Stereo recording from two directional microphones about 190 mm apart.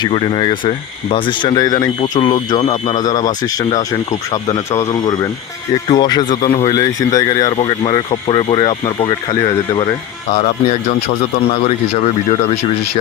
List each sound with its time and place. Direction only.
0.0 s speech: 30° left (ahead or behind)
3.0 s speech: 20° left (ahead or behind)
12.0 s speech: 35° left (ahead or behind)